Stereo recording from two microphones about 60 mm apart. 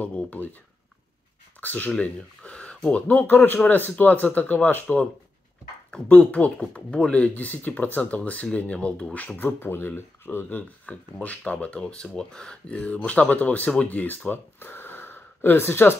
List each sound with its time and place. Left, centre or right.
0.0 s speech: left
1.6 s speech: left
6.0 s speech: left
9.4 s speech: left